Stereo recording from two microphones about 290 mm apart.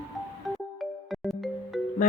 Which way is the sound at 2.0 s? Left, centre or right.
Left.